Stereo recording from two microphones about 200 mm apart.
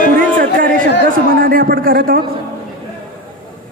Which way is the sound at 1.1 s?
45° right (ahead or behind).